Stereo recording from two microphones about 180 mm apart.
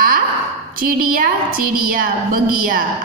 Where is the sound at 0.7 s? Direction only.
50° right (ahead or behind).